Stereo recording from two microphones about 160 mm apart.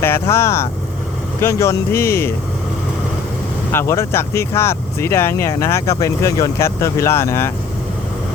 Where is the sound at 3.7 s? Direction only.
15° left (ahead or behind).